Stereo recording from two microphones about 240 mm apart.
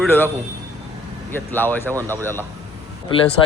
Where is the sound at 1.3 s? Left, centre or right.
Centre.